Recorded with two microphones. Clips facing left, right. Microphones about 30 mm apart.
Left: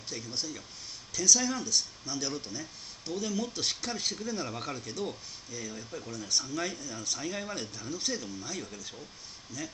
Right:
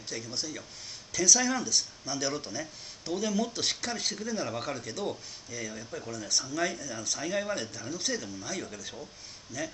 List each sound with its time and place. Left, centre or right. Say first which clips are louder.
0.1 s speech: right 1 dB; centre
4.5 s speech: right 3 dB; centre
6.1 s speech: right 1 dB; centre
7.2 s speech: right 8 dB; centre
7.9 s speech: right 1 dB; centre